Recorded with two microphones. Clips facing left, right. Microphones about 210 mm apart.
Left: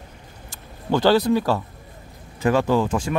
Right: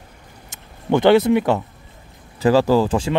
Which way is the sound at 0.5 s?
20° right (ahead or behind).